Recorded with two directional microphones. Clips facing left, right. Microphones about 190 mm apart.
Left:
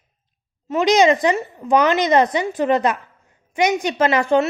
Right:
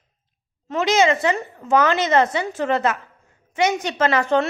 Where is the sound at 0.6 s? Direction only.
15° left (ahead or behind).